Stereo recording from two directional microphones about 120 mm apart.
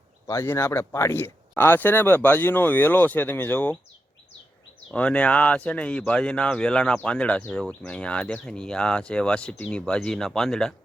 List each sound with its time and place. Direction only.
0.3 s speech: 20° left (ahead or behind)
4.9 s speech: 10° left (ahead or behind)